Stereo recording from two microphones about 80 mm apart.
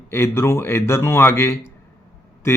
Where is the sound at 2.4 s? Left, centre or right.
Left.